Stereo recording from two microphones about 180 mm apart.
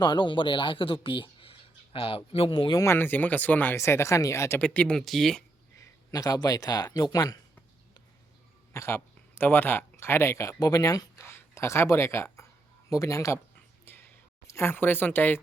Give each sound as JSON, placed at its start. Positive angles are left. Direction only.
{"t": 0.0, "sound": "speech", "side_deg": 25}
{"t": 2.8, "sound": "speech", "side_deg": 10}
{"t": 5.8, "sound": "speech", "side_deg": 20}
{"t": 8.7, "sound": "speech", "side_deg": 15}
{"t": 13.8, "sound": "a sound", "side_deg": 10}